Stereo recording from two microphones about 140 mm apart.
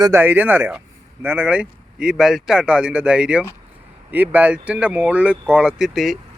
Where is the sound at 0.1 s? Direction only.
15° right (ahead or behind).